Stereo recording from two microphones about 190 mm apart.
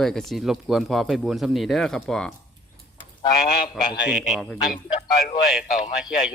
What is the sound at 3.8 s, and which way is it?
Speech, 5° right (ahead or behind).